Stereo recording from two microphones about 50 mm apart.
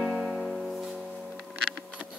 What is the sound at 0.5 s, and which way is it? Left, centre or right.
Music, centre.